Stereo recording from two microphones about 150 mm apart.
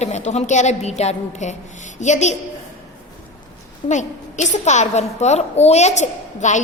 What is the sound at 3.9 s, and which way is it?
A woman's voice, 50° left (ahead or behind).